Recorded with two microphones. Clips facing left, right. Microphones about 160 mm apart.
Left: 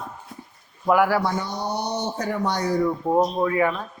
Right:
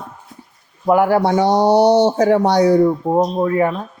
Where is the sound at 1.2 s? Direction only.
75° right (ahead or behind).